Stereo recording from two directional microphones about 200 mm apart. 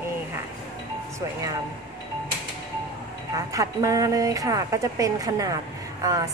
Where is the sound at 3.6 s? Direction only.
15° right (ahead or behind).